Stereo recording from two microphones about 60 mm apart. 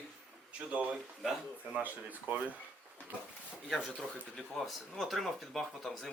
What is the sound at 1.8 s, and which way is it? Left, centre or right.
Speech, right.